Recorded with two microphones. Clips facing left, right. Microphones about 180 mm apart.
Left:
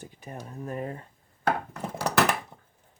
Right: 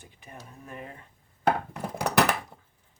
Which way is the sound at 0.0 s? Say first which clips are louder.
Left 6 dB; 40° left (ahead or behind).